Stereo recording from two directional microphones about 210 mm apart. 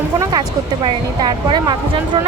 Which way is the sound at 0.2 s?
20° right (ahead or behind).